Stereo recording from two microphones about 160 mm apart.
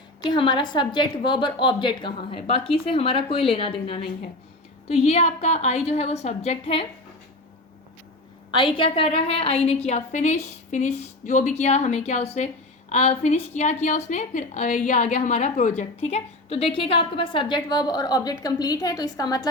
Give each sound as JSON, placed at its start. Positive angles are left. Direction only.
{"t": 0.3, "sound": "a woman's voice", "side_deg": 30}
{"t": 8.5, "sound": "a woman's voice", "side_deg": 30}